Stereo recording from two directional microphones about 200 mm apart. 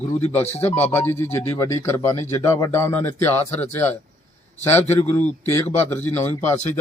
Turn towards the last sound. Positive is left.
turn(degrees=10)  # may be behind; listen again after turning